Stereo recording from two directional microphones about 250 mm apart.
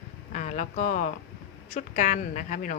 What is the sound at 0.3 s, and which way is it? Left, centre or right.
A woman's voice, left.